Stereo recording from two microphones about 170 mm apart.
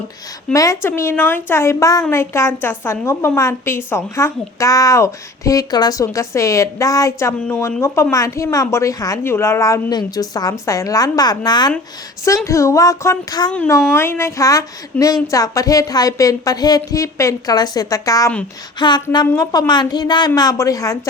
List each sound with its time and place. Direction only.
0.5 s a woman's voice: 20° left (ahead or behind)